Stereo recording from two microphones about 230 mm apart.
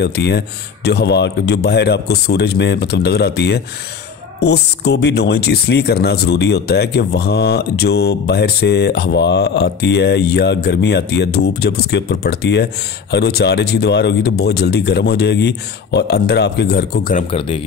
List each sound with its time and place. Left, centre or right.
0.0 s speech: left
17.3 s speech: left